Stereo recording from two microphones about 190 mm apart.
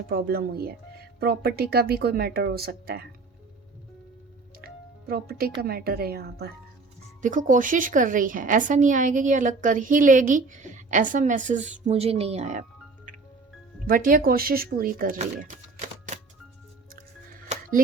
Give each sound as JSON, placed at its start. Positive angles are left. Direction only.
{"t": 0.1, "sound": "a woman's voice", "side_deg": -55}
{"t": 4.6, "sound": "music", "side_deg": -50}
{"t": 5.6, "sound": "speech", "side_deg": -55}
{"t": 7.2, "sound": "a woman's voice", "side_deg": -40}
{"t": 13.1, "sound": "music", "side_deg": -45}
{"t": 13.8, "sound": "a woman's voice", "side_deg": -45}